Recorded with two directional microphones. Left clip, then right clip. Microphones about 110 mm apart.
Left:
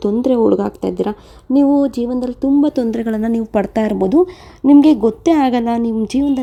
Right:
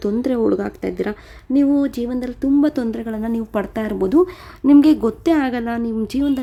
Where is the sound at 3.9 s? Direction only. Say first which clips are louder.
Even; 25° left (ahead or behind).